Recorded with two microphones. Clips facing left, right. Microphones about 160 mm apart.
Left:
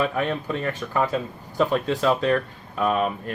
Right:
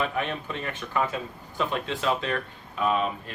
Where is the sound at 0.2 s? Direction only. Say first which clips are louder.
Left 5 dB; 40° left (ahead or behind).